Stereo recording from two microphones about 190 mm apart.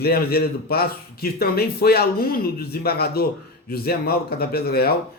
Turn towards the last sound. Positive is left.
turn(degrees=55)  # may be behind; listen again after turning